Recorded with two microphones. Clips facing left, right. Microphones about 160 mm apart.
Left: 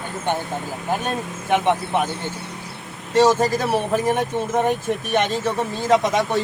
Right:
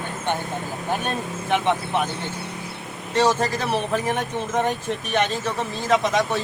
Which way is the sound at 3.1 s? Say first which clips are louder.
Left 4 dB; 10° left (ahead or behind).